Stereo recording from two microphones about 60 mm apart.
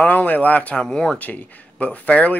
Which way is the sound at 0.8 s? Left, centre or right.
Centre.